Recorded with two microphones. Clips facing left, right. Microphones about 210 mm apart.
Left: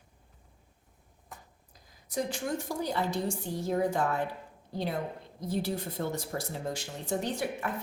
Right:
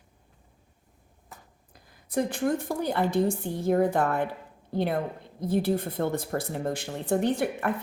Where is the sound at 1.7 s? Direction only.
55° right (ahead or behind).